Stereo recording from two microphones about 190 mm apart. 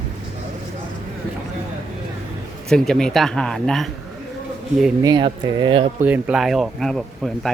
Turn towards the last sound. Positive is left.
turn(degrees=0)  # may be behind; listen again after turning